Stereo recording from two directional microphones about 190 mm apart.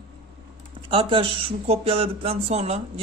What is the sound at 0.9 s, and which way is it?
Speech, 25° right (ahead or behind).